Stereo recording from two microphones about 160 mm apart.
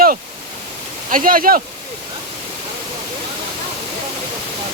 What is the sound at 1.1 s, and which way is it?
Speech, 60° right (ahead or behind).